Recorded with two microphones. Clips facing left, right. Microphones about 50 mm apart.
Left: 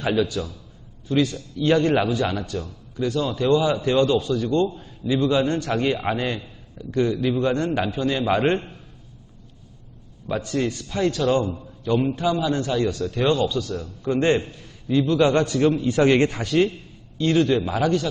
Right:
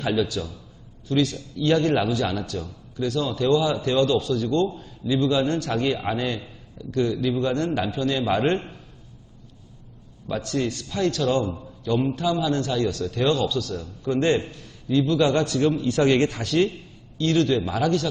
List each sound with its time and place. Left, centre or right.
0.0 s a man's voice: centre
10.2 s a man's voice: centre